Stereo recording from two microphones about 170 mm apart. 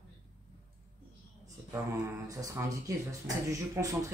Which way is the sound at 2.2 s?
20° right (ahead or behind).